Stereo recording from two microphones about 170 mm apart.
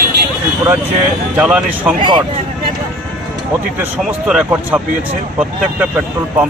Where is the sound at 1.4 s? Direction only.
5° right (ahead or behind).